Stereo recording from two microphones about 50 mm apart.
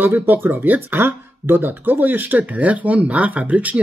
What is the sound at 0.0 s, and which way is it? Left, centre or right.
Speech, right.